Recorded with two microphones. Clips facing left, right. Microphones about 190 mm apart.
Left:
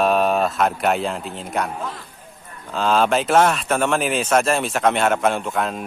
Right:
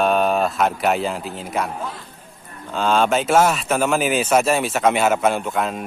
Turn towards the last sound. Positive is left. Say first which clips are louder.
# right 1 dB
turn(degrees=0)  # may be behind; listen again after turning